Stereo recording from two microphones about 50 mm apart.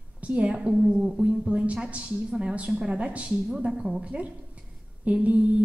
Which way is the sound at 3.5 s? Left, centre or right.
Centre.